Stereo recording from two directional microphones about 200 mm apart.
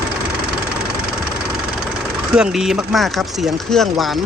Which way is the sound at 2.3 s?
5° right (ahead or behind).